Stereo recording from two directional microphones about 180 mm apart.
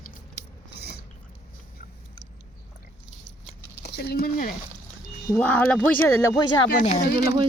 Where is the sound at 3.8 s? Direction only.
60° left (ahead or behind).